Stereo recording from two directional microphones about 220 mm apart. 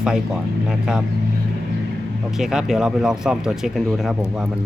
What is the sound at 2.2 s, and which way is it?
Speech, centre (ahead or behind).